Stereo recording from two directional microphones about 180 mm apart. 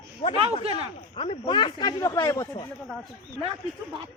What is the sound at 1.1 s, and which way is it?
Speech, 30° left (ahead or behind).